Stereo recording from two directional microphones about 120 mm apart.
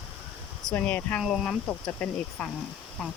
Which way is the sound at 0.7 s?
10° left (ahead or behind).